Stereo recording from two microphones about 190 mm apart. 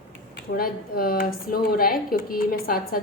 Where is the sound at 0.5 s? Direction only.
50° left (ahead or behind).